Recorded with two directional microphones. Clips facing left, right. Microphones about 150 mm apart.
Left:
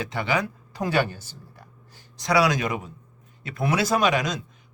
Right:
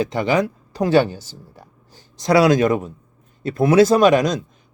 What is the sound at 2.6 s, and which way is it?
Speech, 45° right (ahead or behind).